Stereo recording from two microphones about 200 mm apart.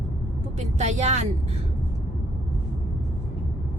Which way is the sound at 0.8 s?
35° right (ahead or behind).